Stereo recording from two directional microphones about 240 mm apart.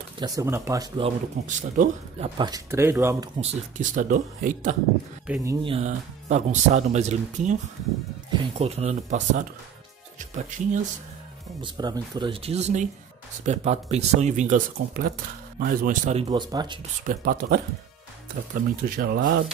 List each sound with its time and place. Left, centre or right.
0.2 s speech: centre
1.5 s speech: right; by 3.3 s centre
3.3 s speech: right
5.2 s speech: centre; by 9.4 s right
10.5 s speech: right
11.6 s speech: centre
17.0 s speech: right